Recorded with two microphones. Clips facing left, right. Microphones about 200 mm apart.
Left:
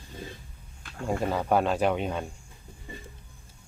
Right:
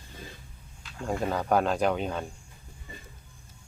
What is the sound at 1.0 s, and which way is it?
Speech, 5° left (ahead or behind).